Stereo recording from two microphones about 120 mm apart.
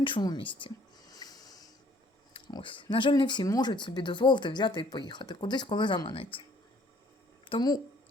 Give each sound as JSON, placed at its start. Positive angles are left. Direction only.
{"t": 0.0, "sound": "a sound", "side_deg": 40}
{"t": 2.5, "sound": "speech", "side_deg": 45}
{"t": 7.4, "sound": "speech", "side_deg": 40}